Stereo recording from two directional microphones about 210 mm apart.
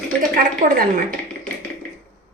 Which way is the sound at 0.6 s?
40° right (ahead or behind).